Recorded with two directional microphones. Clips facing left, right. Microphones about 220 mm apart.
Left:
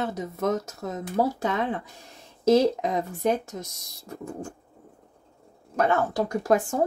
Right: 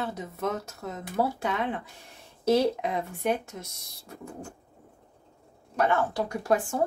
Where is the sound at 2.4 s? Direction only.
40° left (ahead or behind).